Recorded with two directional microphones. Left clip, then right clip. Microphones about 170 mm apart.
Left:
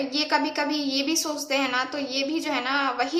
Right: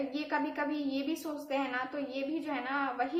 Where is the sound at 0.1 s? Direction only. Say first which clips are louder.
Left 10 dB; 25° left (ahead or behind).